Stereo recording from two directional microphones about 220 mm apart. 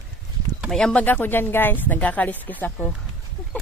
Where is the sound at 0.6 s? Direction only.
Centre (ahead or behind).